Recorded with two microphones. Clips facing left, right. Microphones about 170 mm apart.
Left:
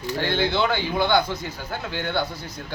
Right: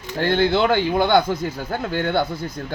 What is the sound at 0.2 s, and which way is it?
Speech, 50° right (ahead or behind).